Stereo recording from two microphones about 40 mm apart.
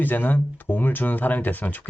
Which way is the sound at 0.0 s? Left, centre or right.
Left.